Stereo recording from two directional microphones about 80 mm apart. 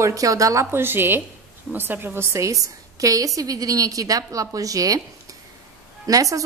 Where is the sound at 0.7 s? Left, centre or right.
Right.